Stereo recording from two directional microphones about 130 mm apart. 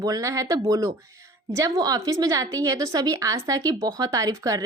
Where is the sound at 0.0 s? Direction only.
25° right (ahead or behind).